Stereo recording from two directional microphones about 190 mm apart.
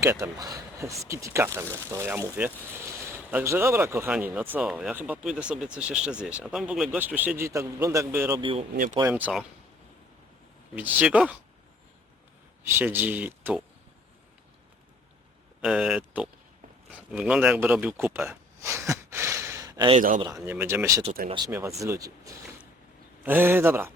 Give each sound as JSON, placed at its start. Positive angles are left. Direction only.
{"t": 0.0, "sound": "speech", "side_deg": -15}
{"t": 8.4, "sound": "speech", "side_deg": -25}
{"t": 8.7, "sound": "speech", "side_deg": -45}
{"t": 9.0, "sound": "speech", "side_deg": -10}
{"t": 10.8, "sound": "speech", "side_deg": -5}
{"t": 12.8, "sound": "speech", "side_deg": -10}
{"t": 15.6, "sound": "speech", "side_deg": -5}
{"t": 17.1, "sound": "a sound", "side_deg": -5}
{"t": 20.0, "sound": "speech", "side_deg": -45}
{"t": 20.3, "sound": "speech", "side_deg": -10}